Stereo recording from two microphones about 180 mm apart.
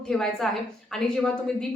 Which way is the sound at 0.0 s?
5° left (ahead or behind).